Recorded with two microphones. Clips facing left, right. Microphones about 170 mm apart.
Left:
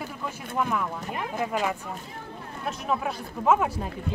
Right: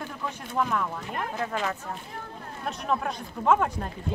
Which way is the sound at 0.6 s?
5° left (ahead or behind).